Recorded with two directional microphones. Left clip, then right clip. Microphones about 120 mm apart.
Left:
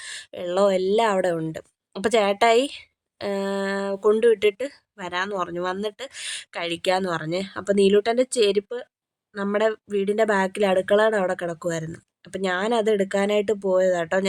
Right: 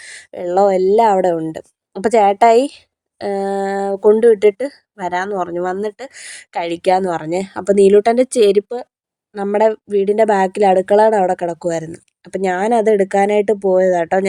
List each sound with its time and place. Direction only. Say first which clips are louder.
0.0 s speech: right 6 dB; 20° right (ahead or behind)